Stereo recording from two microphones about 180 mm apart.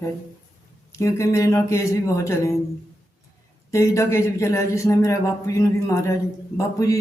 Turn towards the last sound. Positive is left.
turn(degrees=15)  # may be behind; listen again after turning